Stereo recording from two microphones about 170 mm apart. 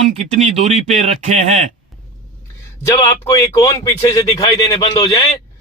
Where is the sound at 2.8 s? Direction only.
20° left (ahead or behind).